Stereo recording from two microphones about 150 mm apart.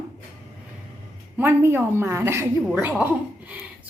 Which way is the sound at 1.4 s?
15° right (ahead or behind).